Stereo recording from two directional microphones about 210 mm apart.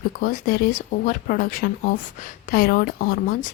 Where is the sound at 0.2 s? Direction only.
45° left (ahead or behind).